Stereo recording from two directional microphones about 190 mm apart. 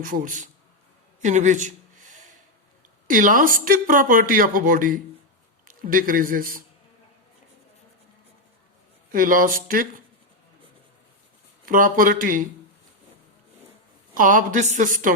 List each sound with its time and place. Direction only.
0.0 s speech: 45° right (ahead or behind)
1.2 s a sound: 40° right (ahead or behind)
3.1 s a man's voice: 45° right (ahead or behind)
9.1 s speech: 45° right (ahead or behind)
11.6 s speech: 45° right (ahead or behind)
14.1 s speech: 45° right (ahead or behind)